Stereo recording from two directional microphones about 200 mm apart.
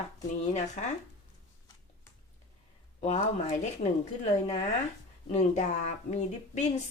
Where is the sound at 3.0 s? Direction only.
35° left (ahead or behind).